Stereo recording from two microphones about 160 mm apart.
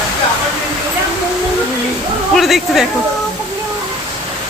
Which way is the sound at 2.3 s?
Centre (ahead or behind).